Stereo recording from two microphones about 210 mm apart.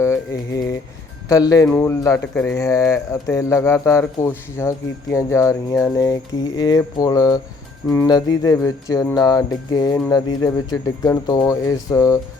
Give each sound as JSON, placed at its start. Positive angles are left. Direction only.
{"t": 0.0, "sound": "mantra", "side_deg": 15}
{"t": 1.3, "sound": "speech", "side_deg": 15}